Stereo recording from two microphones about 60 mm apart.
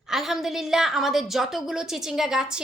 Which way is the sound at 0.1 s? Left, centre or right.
Centre.